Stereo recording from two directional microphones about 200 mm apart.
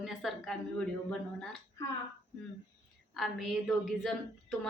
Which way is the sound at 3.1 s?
Centre (ahead or behind).